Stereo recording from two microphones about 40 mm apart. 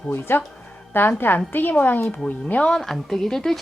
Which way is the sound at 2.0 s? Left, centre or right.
Left.